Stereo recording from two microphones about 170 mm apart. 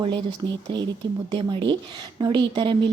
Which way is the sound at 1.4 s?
30° right (ahead or behind).